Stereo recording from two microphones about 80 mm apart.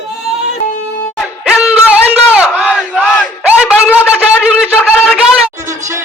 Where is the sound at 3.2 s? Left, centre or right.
Centre.